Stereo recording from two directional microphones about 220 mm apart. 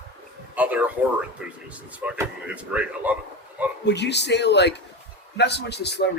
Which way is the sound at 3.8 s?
50° left (ahead or behind).